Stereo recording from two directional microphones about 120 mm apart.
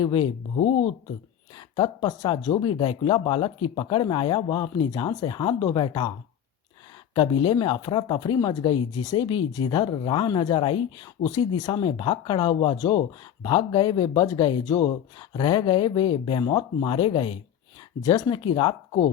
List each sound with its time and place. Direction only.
0.0 s speech: 45° left (ahead or behind)
1.5 s speech: 40° left (ahead or behind)
7.4 s speech: 40° left (ahead or behind)
11.3 s speech: 35° left (ahead or behind)
18.0 s speech: 35° left (ahead or behind)
18.3 s speech: 45° left (ahead or behind)